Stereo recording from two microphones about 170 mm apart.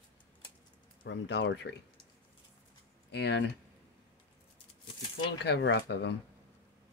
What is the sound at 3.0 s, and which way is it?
Speech, 80° left.